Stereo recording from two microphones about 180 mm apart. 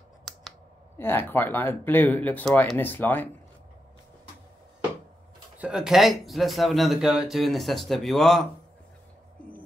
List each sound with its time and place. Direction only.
0.3 s scissors: centre (ahead or behind)
0.9 s speech: 10° left (ahead or behind)
5.6 s speech: 5° right (ahead or behind)